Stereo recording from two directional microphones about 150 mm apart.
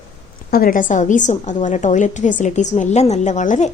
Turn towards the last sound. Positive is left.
turn(degrees=55)  # may be behind; listen again after turning